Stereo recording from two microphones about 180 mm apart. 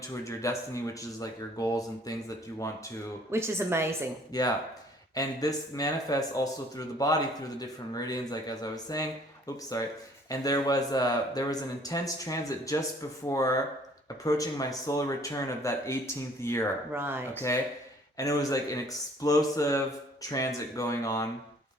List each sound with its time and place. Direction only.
0.1 s speech: 15° left (ahead or behind)
3.3 s a woman's voice: 15° right (ahead or behind)
4.3 s speech: 20° left (ahead or behind)
16.9 s a woman's voice: 10° right (ahead or behind)
18.2 s speech: 20° left (ahead or behind)